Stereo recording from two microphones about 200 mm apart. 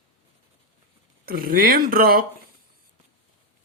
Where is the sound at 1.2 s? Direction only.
45° right (ahead or behind).